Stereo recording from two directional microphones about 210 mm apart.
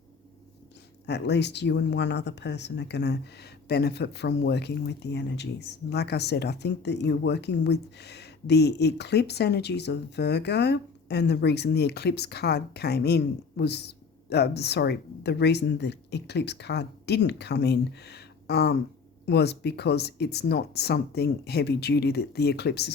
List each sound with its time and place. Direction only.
1.0 s speech: 55° left (ahead or behind)